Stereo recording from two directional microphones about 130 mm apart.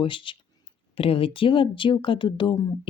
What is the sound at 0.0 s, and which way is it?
A woman's voice, 40° left (ahead or behind).